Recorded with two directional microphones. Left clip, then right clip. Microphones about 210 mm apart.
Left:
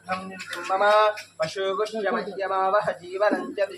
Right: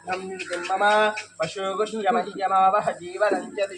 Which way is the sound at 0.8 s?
30° left (ahead or behind).